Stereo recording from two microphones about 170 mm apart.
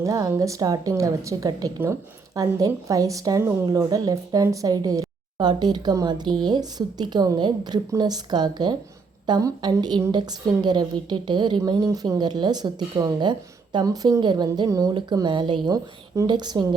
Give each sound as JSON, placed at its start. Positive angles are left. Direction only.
{"t": 0.0, "sound": "a woman's voice", "side_deg": -20}